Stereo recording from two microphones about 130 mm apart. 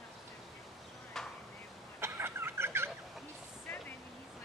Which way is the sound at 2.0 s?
20° right (ahead or behind).